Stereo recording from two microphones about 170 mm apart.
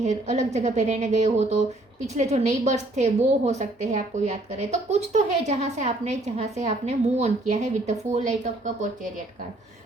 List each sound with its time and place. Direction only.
0.0 s a woman's voice: 45° right (ahead or behind)